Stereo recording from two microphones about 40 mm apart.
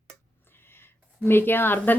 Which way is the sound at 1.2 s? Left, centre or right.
Left.